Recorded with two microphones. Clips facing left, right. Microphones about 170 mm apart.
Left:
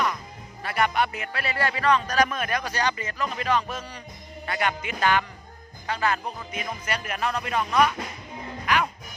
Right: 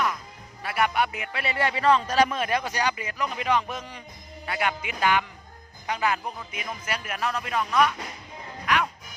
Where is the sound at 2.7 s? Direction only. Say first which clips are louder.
Even; 10° right (ahead or behind).